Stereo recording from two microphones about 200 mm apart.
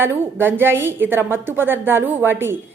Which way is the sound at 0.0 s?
10° right (ahead or behind).